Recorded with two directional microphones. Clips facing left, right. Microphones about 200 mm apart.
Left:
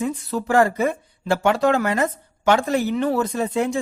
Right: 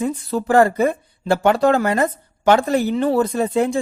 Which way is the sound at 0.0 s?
35° right (ahead or behind).